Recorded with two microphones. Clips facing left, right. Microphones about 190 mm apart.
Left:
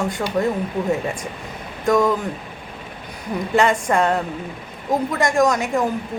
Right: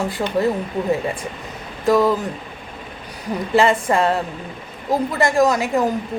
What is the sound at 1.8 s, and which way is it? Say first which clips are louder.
Speech: right 1 dB; 5° right (ahead or behind).